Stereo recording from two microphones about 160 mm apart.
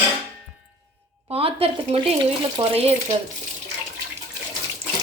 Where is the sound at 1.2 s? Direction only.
35° right (ahead or behind).